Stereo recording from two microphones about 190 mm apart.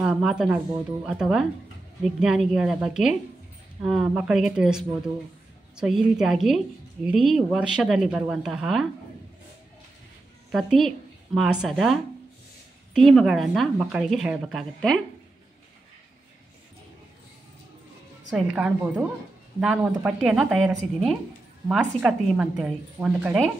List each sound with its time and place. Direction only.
0.0 s a woman's voice: 5° right (ahead or behind)
10.5 s a woman's voice: centre (ahead or behind)
18.3 s a woman's voice: 5° right (ahead or behind)